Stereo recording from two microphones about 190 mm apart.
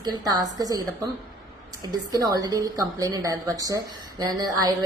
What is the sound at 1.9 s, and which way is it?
A woman's voice, 20° right (ahead or behind).